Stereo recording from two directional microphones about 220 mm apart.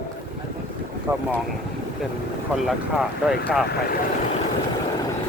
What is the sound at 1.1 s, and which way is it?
Speech, 15° right (ahead or behind).